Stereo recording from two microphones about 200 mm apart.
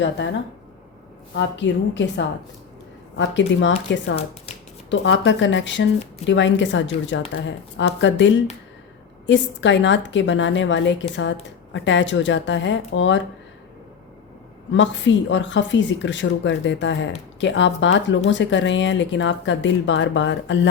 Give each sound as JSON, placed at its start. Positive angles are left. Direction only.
{"t": 1.4, "sound": "a woman's voice", "side_deg": 65}
{"t": 14.7, "sound": "a woman's voice", "side_deg": 65}